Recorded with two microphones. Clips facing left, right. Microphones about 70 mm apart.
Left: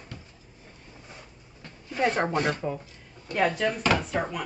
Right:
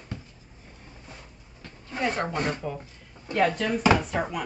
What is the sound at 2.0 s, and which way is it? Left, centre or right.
Speech, left.